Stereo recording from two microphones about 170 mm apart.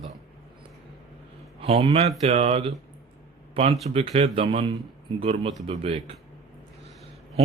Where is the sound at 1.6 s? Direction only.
35° right (ahead or behind).